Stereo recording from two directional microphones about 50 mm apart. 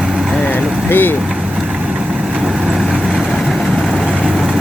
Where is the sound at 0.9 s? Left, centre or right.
Left.